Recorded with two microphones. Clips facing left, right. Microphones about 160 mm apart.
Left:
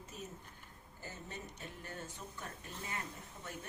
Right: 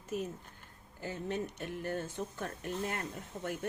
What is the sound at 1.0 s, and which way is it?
Speech, 70° right (ahead or behind).